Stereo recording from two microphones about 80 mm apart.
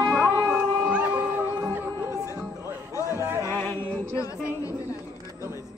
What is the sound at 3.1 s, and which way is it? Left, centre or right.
Music, right.